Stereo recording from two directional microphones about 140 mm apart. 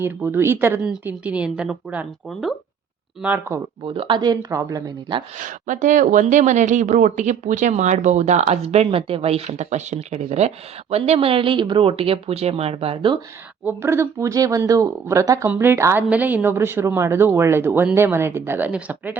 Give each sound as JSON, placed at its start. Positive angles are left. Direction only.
{"t": 0.0, "sound": "speech", "side_deg": -15}
{"t": 3.2, "sound": "speech", "side_deg": -15}
{"t": 3.8, "sound": "speech", "side_deg": -35}
{"t": 5.4, "sound": "speech", "side_deg": -65}
{"t": 13.7, "sound": "speech", "side_deg": -20}